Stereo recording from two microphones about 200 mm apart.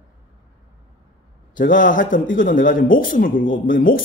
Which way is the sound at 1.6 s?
45° left (ahead or behind).